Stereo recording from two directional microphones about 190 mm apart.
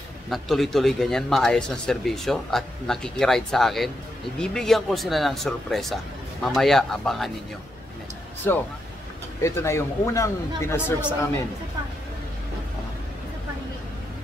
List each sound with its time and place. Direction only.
0.3 s speech: centre (ahead or behind)
8.5 s speech: 10° left (ahead or behind)